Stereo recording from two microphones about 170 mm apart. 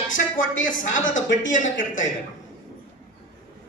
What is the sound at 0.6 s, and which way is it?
Speech, 50° left (ahead or behind).